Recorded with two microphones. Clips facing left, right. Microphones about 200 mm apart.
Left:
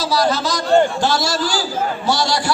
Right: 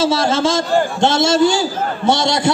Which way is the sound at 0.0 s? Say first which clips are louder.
Right 3 dB; 25° right (ahead or behind).